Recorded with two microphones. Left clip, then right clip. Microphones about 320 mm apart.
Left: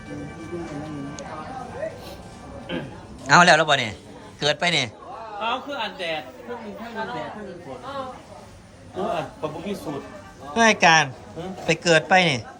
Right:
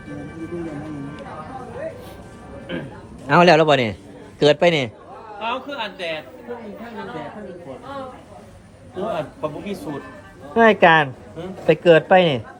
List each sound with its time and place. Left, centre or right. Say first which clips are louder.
2.7 s a man's voice: right 1 dB; centre
3.4 s a man's voice: right 3 dB; centre
9.0 s a man's voice: right 2 dB; centre
10.5 s speech: right 3 dB; centre